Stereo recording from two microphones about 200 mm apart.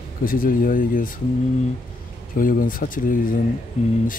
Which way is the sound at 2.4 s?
45° left (ahead or behind).